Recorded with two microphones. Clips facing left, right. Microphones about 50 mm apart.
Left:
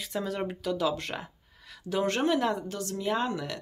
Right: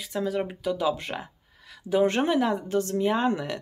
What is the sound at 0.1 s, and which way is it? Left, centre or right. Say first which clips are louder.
Speech: right 4 dB; centre.